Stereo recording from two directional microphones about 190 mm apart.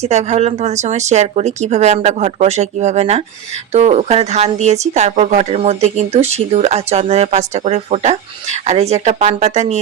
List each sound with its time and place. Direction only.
0.0 s speech: 35° right (ahead or behind)